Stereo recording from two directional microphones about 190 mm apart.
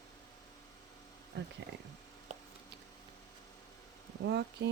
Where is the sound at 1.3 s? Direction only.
60° right (ahead or behind).